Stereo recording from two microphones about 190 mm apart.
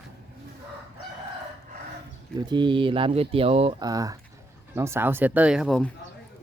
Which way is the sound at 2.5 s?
25° right (ahead or behind).